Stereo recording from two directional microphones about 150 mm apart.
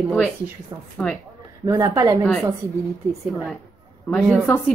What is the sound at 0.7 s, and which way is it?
Speech, 25° right (ahead or behind).